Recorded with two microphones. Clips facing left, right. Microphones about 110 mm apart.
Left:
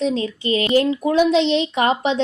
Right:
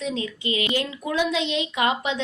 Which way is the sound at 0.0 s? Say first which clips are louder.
Left 7 dB; 35° left (ahead or behind).